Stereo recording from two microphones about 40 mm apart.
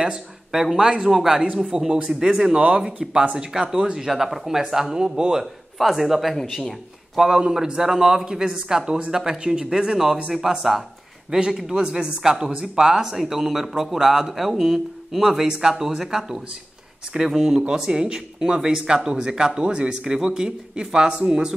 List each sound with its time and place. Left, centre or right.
0.5 s speech: centre
1.7 s speech: right
2.0 s speech: centre
4.1 s speech: centre
5.8 s a man's voice: centre
7.2 s speech: centre
11.2 s speech: right
11.5 s speech: centre